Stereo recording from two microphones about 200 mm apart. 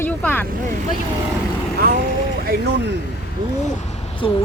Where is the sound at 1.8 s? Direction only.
45° right (ahead or behind).